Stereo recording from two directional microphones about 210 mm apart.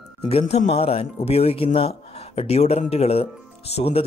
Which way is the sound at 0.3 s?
30° left (ahead or behind).